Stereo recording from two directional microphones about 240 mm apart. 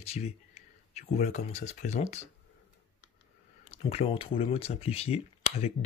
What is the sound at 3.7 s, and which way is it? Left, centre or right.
Speech, left.